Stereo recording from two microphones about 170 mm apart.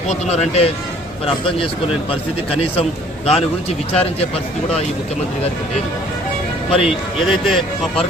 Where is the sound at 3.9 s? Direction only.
35° left (ahead or behind).